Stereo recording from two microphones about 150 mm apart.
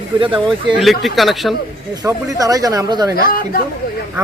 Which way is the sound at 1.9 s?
25° right (ahead or behind).